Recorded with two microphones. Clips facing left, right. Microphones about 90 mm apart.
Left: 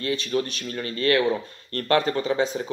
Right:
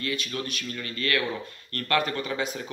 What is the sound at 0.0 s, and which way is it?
Speech, 30° left (ahead or behind).